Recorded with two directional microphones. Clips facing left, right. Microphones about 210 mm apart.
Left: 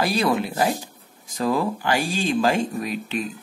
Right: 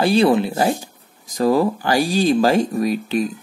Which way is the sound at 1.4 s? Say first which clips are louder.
Right 6 dB; 40° right (ahead or behind).